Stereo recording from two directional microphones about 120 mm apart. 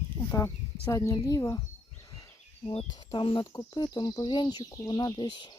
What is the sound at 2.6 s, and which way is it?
Speech, 60° left (ahead or behind).